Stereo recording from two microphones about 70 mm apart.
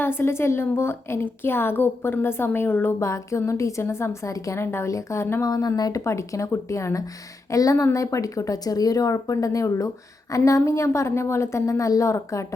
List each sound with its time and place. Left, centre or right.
0.0 s a woman's voice: left
3.1 s a woman's voice: left
5.4 s speech: left
6.1 s a woman's voice: left